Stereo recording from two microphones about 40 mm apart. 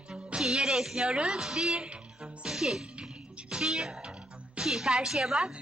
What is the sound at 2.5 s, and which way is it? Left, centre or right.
Sneeze, centre.